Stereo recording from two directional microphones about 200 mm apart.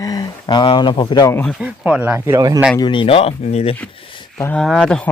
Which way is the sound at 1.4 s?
5° left (ahead or behind).